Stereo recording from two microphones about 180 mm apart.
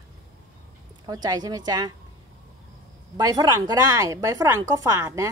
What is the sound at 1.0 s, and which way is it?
Speech, 20° right (ahead or behind).